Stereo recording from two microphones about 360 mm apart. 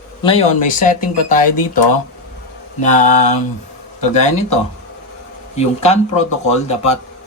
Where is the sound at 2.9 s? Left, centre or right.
Centre.